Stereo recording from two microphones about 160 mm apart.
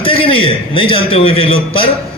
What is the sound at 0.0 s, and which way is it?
A man's voice, 35° left (ahead or behind).